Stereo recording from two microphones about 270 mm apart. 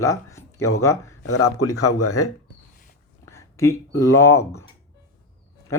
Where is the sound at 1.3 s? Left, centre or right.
Left.